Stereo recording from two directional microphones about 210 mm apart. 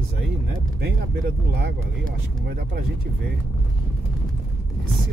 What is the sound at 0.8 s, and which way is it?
Speech, 50° right (ahead or behind).